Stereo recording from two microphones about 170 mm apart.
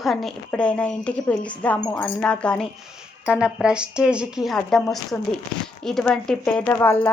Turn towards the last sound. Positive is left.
turn(degrees=10)  # may be behind; listen again after turning